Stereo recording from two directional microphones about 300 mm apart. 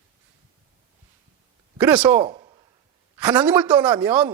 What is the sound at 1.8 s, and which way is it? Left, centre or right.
Speech, centre.